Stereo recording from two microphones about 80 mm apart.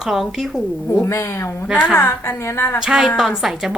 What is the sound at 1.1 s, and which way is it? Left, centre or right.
A woman's voice, left.